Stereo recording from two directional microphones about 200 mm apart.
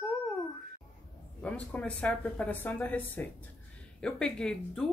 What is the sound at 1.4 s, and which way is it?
Speech, 5° left (ahead or behind).